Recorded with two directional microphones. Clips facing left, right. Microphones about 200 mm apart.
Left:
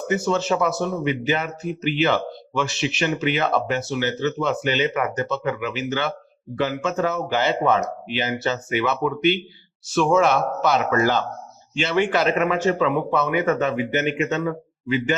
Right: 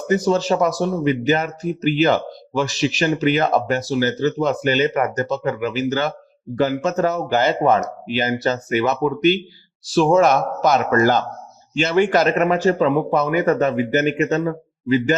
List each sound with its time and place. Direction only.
0.1 s speech: 40° right (ahead or behind)